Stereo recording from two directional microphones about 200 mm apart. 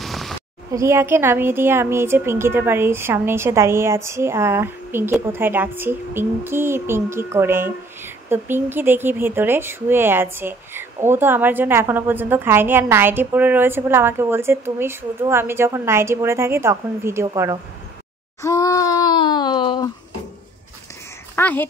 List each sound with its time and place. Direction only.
0.0 s a sound: centre (ahead or behind)
0.7 s a woman's voice: 15° right (ahead or behind)
18.4 s speech: 15° left (ahead or behind)
21.4 s speech: 10° left (ahead or behind)